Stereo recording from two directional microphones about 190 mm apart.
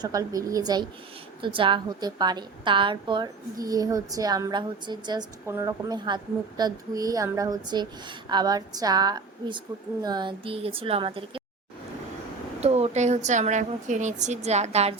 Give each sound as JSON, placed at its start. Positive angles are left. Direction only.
{"t": 0.0, "sound": "a woman's voice", "side_deg": -20}
{"t": 12.5, "sound": "a woman's voice", "side_deg": -35}